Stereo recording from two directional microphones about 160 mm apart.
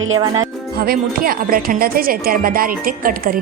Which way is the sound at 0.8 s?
65° right (ahead or behind).